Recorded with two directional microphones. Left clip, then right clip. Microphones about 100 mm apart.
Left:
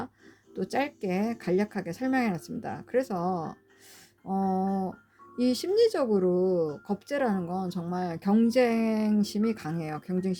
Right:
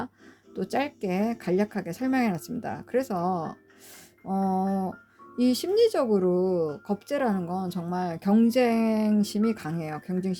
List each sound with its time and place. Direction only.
0.5 s speech: 15° right (ahead or behind)
4.3 s a sound: 20° right (ahead or behind)
5.4 s speech: 15° right (ahead or behind); by 10.3 s centre (ahead or behind)